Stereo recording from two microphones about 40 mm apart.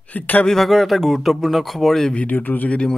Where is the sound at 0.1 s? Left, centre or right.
Left.